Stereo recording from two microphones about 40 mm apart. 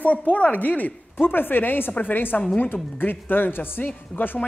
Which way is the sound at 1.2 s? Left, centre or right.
Left.